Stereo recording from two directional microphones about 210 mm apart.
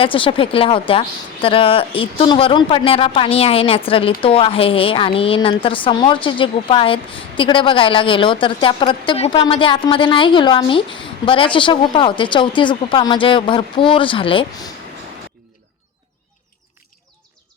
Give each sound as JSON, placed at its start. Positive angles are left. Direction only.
{"t": 0.0, "sound": "speech", "side_deg": 25}